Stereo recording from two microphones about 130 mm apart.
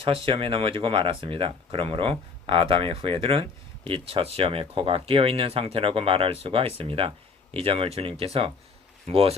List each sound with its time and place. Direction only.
0.0 s speech: 45° right (ahead or behind)